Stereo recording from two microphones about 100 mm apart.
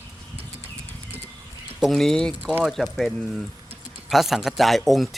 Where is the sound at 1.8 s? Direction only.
5° left (ahead or behind).